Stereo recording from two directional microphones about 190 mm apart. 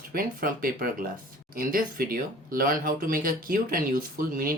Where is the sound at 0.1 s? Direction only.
50° right (ahead or behind).